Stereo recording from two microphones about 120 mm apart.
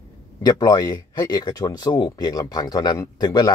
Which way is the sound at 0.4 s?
35° left (ahead or behind).